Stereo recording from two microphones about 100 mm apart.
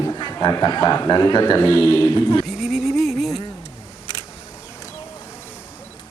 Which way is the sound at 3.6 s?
50° right (ahead or behind).